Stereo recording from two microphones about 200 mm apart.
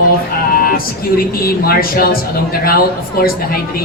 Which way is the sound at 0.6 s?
45° left (ahead or behind).